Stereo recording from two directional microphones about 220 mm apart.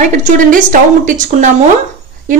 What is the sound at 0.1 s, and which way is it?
A woman's voice, 35° right (ahead or behind).